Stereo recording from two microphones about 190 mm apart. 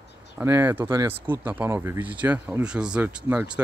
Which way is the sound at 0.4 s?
10° right (ahead or behind).